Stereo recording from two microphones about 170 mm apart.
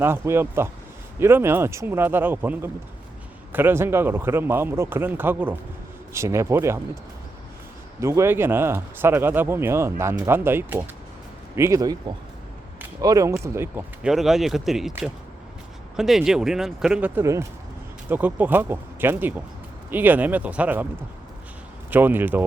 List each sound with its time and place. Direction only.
0.0 s speech: 15° right (ahead or behind)
8.0 s speech: 15° right (ahead or behind)
21.8 s speech: 10° right (ahead or behind)